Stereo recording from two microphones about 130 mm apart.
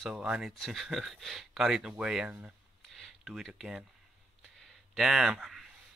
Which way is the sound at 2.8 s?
Centre (ahead or behind).